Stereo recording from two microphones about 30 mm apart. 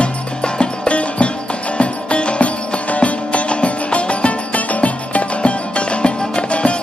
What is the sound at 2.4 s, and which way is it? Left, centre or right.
Music, left.